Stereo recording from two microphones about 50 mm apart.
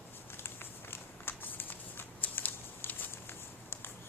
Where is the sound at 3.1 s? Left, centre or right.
Left.